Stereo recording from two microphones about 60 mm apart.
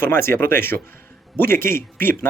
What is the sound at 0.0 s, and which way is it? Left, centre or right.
Speech, left.